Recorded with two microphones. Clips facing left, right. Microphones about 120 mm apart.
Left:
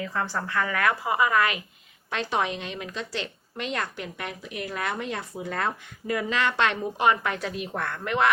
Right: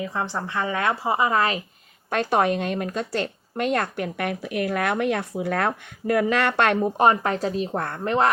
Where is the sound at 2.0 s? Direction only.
50° right (ahead or behind).